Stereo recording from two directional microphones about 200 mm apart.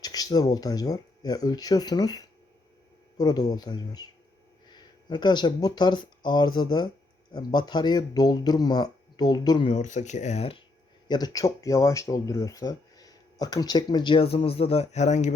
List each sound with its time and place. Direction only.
0.0 s speech: 20° left (ahead or behind)
11.1 s speech: 20° left (ahead or behind); by 15.4 s 35° left (ahead or behind)